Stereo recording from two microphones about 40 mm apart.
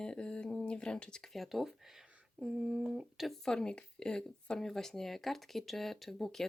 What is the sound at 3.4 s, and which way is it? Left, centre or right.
Speech, centre.